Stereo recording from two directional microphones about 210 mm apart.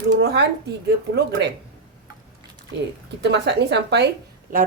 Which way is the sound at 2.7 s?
55° right (ahead or behind).